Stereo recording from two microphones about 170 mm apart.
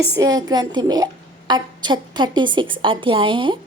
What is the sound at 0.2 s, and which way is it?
A woman's voice, 20° right (ahead or behind).